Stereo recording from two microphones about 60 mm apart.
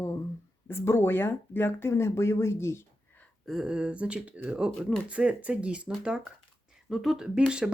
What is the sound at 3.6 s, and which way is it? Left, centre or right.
Speech, centre.